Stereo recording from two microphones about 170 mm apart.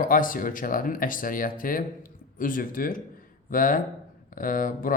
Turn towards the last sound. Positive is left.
turn(degrees=55)  # may be behind; listen again after turning